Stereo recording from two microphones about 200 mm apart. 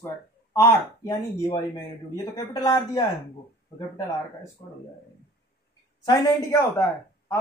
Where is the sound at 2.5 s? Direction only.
20° left (ahead or behind).